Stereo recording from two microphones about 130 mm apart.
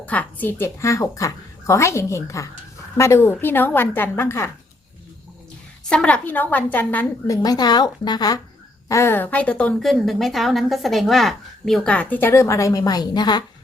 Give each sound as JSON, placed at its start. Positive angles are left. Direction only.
{"t": 0.0, "sound": "a woman's voice", "side_deg": 10}
{"t": 5.9, "sound": "a woman's voice", "side_deg": 10}
{"t": 7.3, "sound": "speech", "side_deg": 30}
{"t": 8.9, "sound": "a woman's voice", "side_deg": 20}